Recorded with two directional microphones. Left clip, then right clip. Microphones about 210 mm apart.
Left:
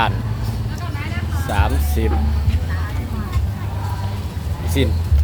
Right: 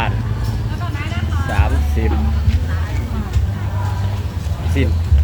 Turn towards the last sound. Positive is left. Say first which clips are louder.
# left 1 dB
turn(degrees=15)  # may be behind; listen again after turning